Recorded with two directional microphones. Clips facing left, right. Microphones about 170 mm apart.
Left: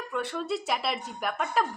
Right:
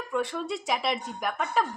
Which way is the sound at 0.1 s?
5° left (ahead or behind).